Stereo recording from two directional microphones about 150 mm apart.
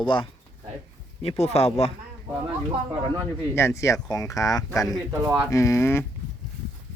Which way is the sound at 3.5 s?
20° left (ahead or behind).